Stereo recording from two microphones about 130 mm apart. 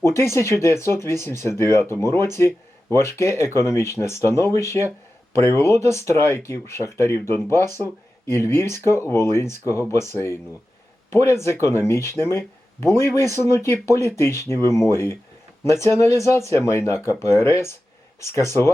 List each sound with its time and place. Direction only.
0.2 s speech: 20° left (ahead or behind)